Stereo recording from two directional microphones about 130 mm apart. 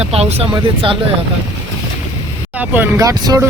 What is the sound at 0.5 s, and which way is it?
Speech, 40° right (ahead or behind).